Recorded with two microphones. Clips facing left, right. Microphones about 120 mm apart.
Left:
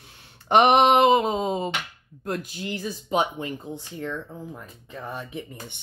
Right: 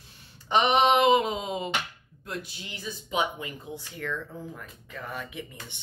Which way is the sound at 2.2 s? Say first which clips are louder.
Left 8 dB; 45° left (ahead or behind).